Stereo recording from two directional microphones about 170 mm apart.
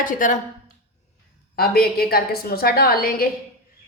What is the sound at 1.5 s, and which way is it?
A woman's voice, 65° left (ahead or behind).